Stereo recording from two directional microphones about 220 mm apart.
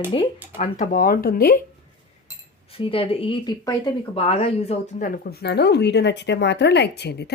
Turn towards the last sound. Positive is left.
turn(degrees=50)  # may be behind; listen again after turning